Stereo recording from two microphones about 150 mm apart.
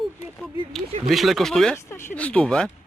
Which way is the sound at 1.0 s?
Centre (ahead or behind).